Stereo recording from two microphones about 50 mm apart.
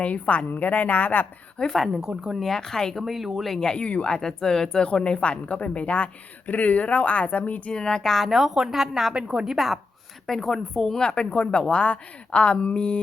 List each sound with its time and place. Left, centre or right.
0.0 s a woman's voice: left
1.7 s a woman's voice: centre
2.0 s a woman's voice: centre
2.4 s speech: centre
3.0 s a woman's voice: centre
3.5 s speech: centre
7.7 s speech: centre
8.3 s a woman's voice: centre
9.6 s a woman's voice: centre; by 13.0 s left